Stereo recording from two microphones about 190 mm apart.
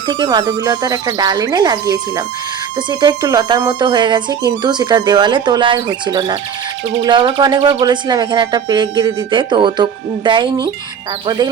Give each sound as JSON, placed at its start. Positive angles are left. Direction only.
{"t": 0.1, "sound": "speech", "side_deg": -20}